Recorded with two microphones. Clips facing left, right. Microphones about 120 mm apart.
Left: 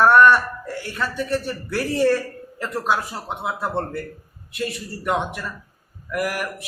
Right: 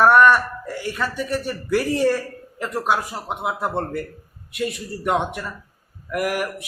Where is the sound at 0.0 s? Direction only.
10° right (ahead or behind).